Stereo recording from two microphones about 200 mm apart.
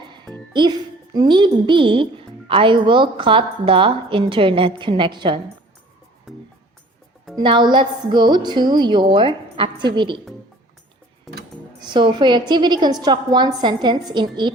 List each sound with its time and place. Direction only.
0.5 s a woman's voice: 20° right (ahead or behind)
7.3 s a woman's voice: 20° right (ahead or behind)
11.8 s a woman's voice: 25° right (ahead or behind)